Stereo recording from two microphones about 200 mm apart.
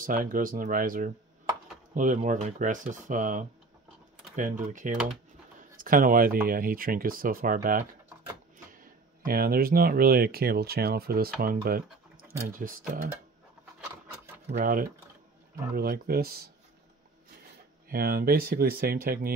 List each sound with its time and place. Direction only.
0.0 s speech: 45° right (ahead or behind)
9.2 s speech: 50° right (ahead or behind)
14.5 s speech: 45° right (ahead or behind)
17.8 s speech: 50° right (ahead or behind)